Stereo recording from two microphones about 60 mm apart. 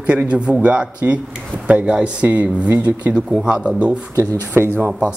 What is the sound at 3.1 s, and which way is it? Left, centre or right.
Speech, centre.